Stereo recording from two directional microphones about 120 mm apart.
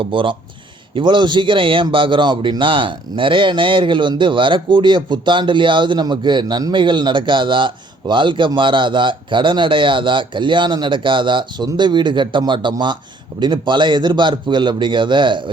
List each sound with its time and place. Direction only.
0.0 s a man's voice: 45° right (ahead or behind)